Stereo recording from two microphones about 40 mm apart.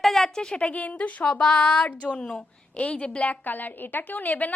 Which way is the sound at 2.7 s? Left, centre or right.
Left.